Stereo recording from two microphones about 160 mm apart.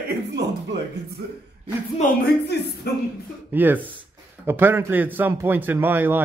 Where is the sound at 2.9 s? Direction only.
75° left (ahead or behind).